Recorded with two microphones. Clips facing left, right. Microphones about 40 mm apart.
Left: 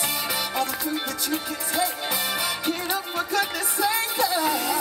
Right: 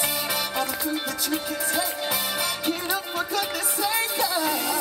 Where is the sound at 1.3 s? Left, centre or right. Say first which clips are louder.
Right 1 dB; centre.